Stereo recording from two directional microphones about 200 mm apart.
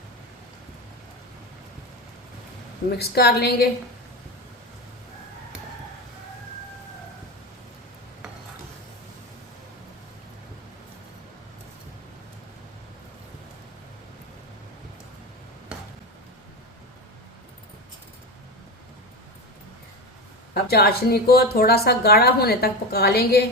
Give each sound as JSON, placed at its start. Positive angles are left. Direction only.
{"t": 3.0, "sound": "speech", "side_deg": 50}
{"t": 20.5, "sound": "speech", "side_deg": 50}